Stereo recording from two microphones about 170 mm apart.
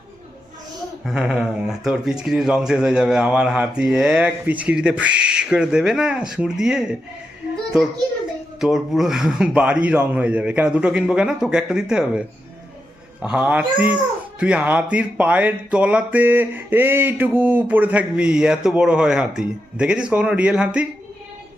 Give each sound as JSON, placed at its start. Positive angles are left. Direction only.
{"t": 1.0, "sound": "speech", "side_deg": -5}
{"t": 8.6, "sound": "speech", "side_deg": 0}
{"t": 13.2, "sound": "speech", "side_deg": -5}